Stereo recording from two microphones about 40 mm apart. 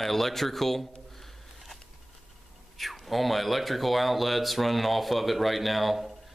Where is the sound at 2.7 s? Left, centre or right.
Centre.